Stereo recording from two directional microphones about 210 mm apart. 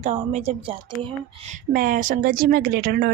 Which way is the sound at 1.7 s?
40° right (ahead or behind).